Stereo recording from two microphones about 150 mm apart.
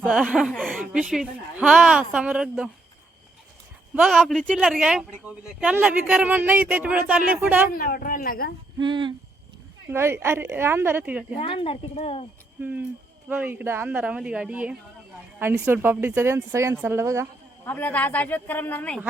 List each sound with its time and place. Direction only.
0.0 s a woman's voice: 5° right (ahead or behind)
3.9 s a woman's voice: centre (ahead or behind)
7.8 s speech: 70° left (ahead or behind)
8.8 s a sound: 30° right (ahead or behind)
9.9 s speech: 15° right (ahead or behind)
11.3 s speech: 35° left (ahead or behind)
12.6 s speech: 10° right (ahead or behind)
17.7 s speech: 10° left (ahead or behind)